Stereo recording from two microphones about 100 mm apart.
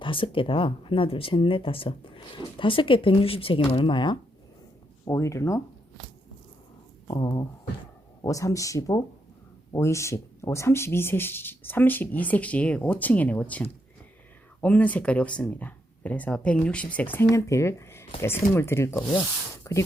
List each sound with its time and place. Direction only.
0.0 s speech: 60° left (ahead or behind)
5.0 s speech: 30° left (ahead or behind)
8.2 s speech: 35° left (ahead or behind); by 17.2 s 15° left (ahead or behind)
17.3 s speech: 30° left (ahead or behind)